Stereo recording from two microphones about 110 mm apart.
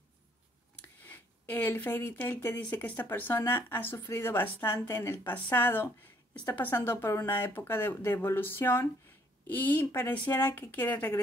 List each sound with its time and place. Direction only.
1.0 s speech: 15° left (ahead or behind)